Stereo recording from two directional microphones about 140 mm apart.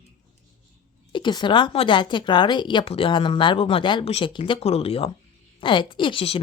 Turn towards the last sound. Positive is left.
turn(degrees=40)  # may be behind; listen again after turning